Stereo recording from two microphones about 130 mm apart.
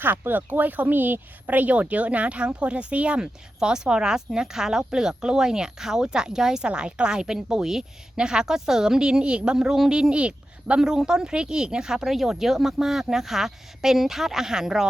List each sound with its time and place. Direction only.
0.0 s speech: 15° right (ahead or behind)